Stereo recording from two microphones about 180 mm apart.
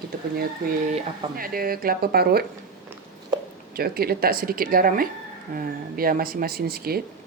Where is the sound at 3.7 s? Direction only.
60° right (ahead or behind).